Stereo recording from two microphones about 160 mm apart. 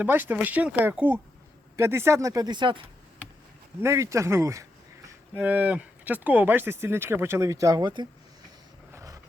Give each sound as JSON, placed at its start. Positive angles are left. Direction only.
{"t": 0.0, "sound": "speech", "side_deg": -10}
{"t": 3.8, "sound": "speech", "side_deg": -15}
{"t": 8.9, "sound": "vehicle", "side_deg": -20}